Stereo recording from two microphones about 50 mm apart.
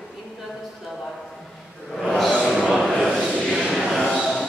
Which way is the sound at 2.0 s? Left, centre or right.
Centre.